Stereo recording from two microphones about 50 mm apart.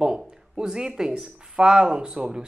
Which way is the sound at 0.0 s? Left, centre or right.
Centre.